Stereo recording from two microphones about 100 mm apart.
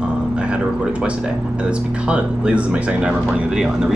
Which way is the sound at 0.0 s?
10° right (ahead or behind).